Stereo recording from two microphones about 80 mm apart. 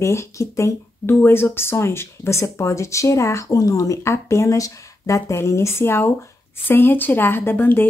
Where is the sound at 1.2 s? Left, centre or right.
Left.